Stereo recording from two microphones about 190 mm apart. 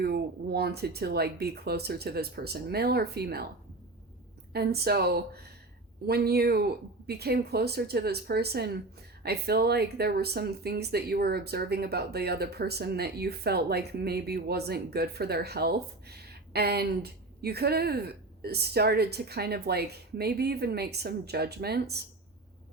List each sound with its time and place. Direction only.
0.0 s speech: 55° right (ahead or behind)
4.5 s speech: 55° right (ahead or behind)